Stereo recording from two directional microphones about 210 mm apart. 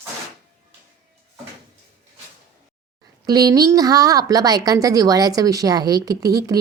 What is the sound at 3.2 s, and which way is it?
A woman's voice, 20° right (ahead or behind).